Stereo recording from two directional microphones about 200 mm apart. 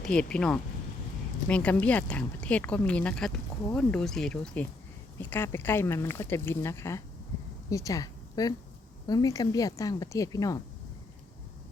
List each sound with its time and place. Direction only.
0.0 s a woman's voice: 5° left (ahead or behind)